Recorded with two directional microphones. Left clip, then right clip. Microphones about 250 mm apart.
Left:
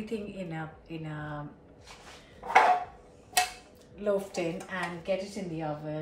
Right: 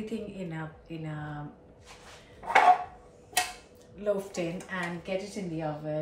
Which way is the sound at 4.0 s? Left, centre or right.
Centre.